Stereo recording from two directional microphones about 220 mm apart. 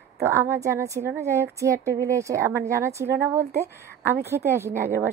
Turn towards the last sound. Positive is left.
turn(degrees=-10)  # may be behind; listen again after turning